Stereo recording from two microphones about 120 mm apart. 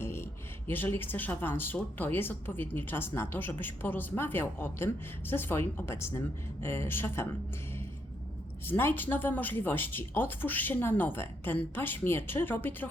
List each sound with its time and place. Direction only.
0.0 s a sound: 20° left (ahead or behind)
0.7 s a woman's voice: 15° left (ahead or behind)
8.6 s speech: 15° left (ahead or behind)